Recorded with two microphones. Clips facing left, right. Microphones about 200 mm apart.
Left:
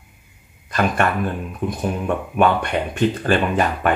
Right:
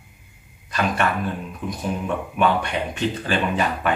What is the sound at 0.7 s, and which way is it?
Speech, 50° left (ahead or behind).